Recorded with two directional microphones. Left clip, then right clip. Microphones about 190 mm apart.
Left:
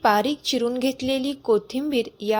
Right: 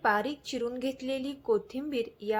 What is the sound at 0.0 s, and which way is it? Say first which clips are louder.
A woman's voice: left 8 dB; 35° left (ahead or behind).